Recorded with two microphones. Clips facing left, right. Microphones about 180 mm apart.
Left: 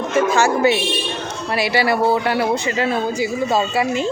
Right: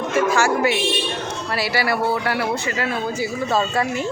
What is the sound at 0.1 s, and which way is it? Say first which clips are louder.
A woman's voice: left 2 dB; 20° left (ahead or behind).